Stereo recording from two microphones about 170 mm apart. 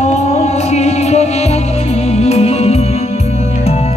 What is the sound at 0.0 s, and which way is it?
Music, 40° left (ahead or behind).